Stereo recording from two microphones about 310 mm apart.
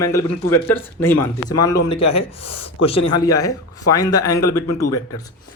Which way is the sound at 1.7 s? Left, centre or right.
Centre.